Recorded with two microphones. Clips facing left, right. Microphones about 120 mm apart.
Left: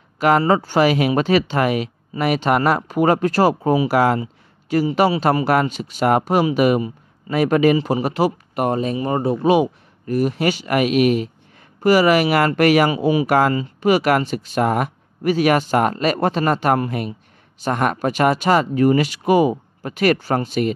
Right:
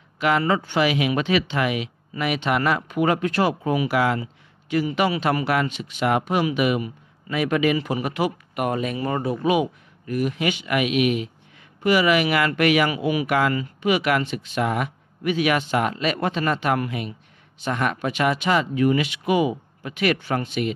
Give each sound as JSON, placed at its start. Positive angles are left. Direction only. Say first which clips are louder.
{"t": 0.2, "sound": "a man's voice", "louder": "left 5 dB", "side_deg": 40}
{"t": 12.9, "sound": "speech", "louder": "left 5 dB", "side_deg": 30}
{"t": 13.3, "sound": "a man's voice", "louder": "left 5 dB", "side_deg": 40}